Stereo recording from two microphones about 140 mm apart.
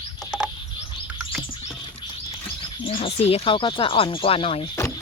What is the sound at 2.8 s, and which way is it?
Speech, 45° left (ahead or behind).